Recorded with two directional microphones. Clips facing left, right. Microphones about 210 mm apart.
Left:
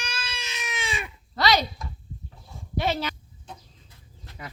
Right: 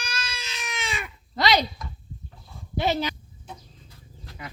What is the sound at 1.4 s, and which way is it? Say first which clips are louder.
Speech: right 1 dB; 15° right (ahead or behind).